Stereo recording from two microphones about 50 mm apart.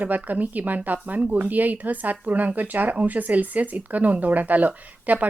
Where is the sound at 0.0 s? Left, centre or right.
Right.